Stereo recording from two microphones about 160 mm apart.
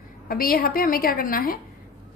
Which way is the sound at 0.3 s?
65° left (ahead or behind).